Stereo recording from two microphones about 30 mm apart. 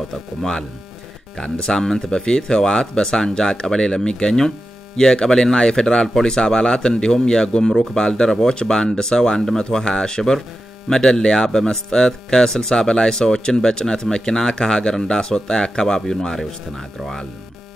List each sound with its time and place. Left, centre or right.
0.4 s speech: left
2.0 s speech: left